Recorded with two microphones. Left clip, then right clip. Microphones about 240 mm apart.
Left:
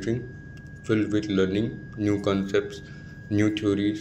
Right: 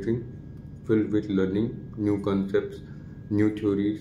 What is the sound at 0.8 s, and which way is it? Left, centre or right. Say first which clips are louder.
A man's voice: even; centre.